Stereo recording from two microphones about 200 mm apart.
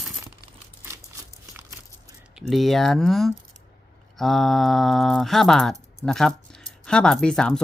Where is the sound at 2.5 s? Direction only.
Centre (ahead or behind).